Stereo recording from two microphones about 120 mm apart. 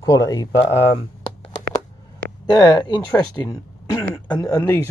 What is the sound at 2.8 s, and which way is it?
Speech, 35° left (ahead or behind).